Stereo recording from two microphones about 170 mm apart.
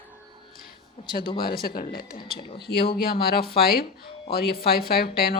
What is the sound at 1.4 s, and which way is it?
Speech, 60° left (ahead or behind).